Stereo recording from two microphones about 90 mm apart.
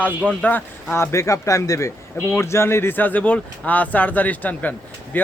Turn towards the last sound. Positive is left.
turn(degrees=20)  # may be behind; listen again after turning